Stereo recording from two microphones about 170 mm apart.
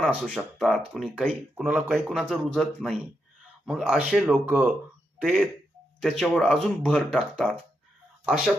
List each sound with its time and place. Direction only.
0.0 s speech: centre (ahead or behind)